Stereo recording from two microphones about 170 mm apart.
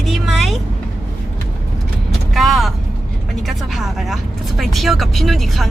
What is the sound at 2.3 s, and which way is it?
Speech, centre (ahead or behind).